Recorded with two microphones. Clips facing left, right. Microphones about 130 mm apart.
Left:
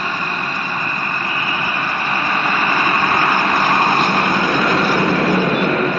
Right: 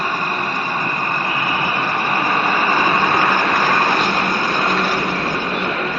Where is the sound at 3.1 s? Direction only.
Centre (ahead or behind).